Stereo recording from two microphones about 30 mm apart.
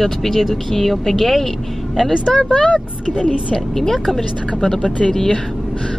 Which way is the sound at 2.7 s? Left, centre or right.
Centre.